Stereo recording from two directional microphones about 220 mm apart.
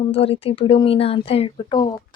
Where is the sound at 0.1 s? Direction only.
25° left (ahead or behind).